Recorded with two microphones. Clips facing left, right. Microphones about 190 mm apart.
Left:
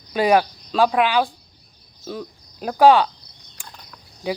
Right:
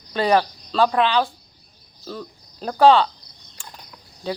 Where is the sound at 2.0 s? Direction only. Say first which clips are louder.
Left 2 dB; 10° left (ahead or behind).